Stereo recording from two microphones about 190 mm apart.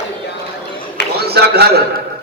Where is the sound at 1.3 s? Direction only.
55° right (ahead or behind).